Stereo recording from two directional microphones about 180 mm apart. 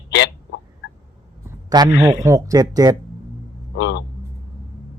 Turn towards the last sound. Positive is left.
turn(degrees=75)  # may be behind; listen again after turning